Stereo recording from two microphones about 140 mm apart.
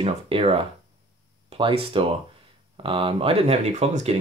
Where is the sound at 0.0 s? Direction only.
40° right (ahead or behind).